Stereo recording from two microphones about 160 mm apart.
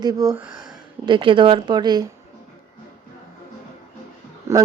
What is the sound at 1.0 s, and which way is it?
A woman's voice, 30° right (ahead or behind).